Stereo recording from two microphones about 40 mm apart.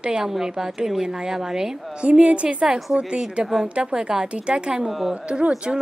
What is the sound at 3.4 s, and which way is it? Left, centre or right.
A woman's voice, right.